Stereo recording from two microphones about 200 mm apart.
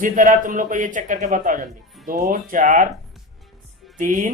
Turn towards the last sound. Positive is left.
turn(degrees=-40)  # may be behind; listen again after turning